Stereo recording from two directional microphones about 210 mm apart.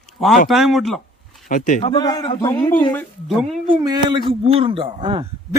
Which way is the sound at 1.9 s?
20° left (ahead or behind).